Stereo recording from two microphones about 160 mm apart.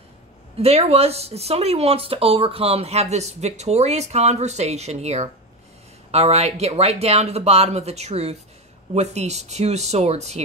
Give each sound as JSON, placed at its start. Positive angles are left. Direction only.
{"t": 0.6, "sound": "speech", "side_deg": -40}